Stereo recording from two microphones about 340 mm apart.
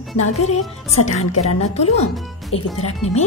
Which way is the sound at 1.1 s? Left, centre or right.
Left.